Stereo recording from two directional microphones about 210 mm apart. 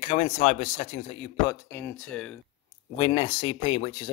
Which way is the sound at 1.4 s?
10° left (ahead or behind).